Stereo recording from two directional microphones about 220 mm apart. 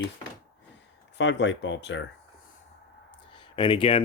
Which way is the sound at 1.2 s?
55° left (ahead or behind).